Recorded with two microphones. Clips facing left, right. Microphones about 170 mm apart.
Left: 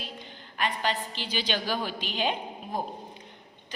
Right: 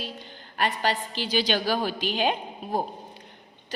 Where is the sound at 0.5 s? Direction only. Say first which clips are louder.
Right 3 dB; 40° right (ahead or behind).